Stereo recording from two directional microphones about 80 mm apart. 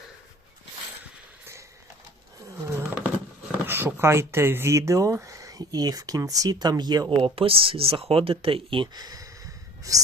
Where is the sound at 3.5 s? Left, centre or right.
Right.